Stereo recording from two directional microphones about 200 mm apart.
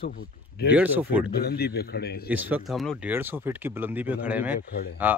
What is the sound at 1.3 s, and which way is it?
Speech, 50° left (ahead or behind).